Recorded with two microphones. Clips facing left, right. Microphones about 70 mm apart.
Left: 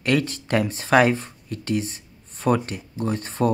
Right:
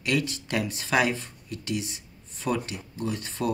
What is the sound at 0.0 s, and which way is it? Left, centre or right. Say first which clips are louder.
Speech: left 5 dB; left.